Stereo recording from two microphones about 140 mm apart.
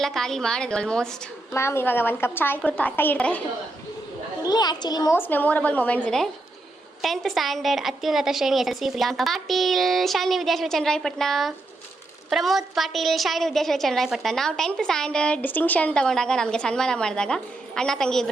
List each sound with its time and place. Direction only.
0.0 s a woman's voice: 5° left (ahead or behind)
1.5 s a woman's voice: 20° left (ahead or behind)
4.4 s a child's voice: 30° left (ahead or behind)
5.1 s a woman's voice: 15° left (ahead or behind)